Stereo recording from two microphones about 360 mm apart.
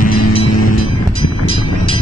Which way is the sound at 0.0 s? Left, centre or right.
Centre.